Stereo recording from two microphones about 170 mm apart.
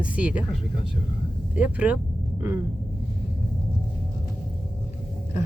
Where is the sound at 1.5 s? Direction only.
10° right (ahead or behind).